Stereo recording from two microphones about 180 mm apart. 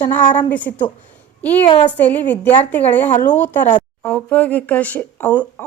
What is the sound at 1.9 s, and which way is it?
Speech, 10° left (ahead or behind).